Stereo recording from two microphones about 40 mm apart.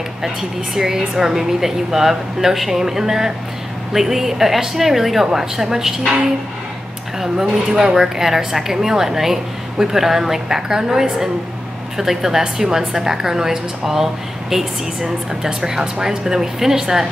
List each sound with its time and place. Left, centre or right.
0.2 s speech: centre
7.2 s speech: centre